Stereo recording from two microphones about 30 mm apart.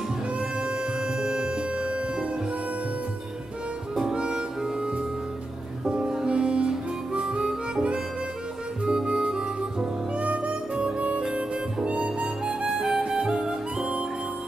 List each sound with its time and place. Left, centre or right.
0.4 s music: right
4.1 s music: right
5.9 s music: right
6.2 s music: right
7.2 s harmonica: right
8.8 s music: right
11.3 s harmonica: right
12.4 s music: right